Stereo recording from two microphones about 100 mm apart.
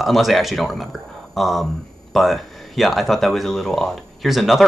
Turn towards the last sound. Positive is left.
turn(degrees=0)  # may be behind; listen again after turning